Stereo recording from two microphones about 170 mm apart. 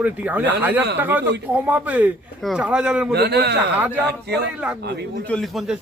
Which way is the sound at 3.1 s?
70° right (ahead or behind).